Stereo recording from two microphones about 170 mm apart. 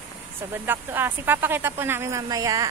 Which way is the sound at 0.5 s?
10° right (ahead or behind).